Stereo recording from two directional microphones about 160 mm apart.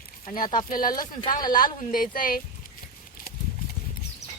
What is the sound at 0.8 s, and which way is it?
Speech, 25° left (ahead or behind).